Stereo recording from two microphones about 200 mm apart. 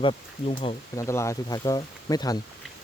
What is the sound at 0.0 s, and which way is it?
Speech, 25° left (ahead or behind).